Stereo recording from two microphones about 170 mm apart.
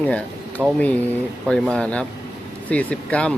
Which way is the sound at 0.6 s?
Centre (ahead or behind).